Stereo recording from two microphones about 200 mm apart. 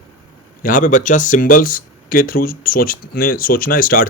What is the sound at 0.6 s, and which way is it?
A man's voice, 40° left (ahead or behind).